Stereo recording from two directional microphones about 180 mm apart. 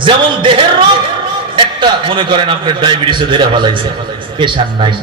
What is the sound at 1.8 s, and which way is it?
A man's voice, 25° right (ahead or behind).